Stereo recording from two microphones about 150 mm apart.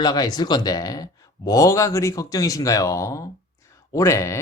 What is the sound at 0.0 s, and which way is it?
Speech, 25° left (ahead or behind).